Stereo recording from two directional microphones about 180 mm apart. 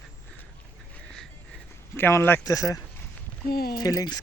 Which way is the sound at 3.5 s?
55° left (ahead or behind).